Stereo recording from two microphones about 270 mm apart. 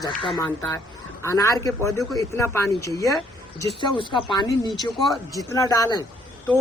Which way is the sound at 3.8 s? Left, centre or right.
Centre.